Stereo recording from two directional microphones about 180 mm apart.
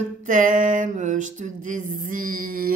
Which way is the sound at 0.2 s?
45° right (ahead or behind).